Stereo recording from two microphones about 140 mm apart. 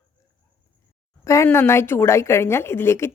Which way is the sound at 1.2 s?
20° left (ahead or behind).